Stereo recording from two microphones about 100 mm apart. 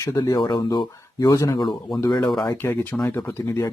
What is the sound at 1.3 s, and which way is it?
Speech, 35° left (ahead or behind).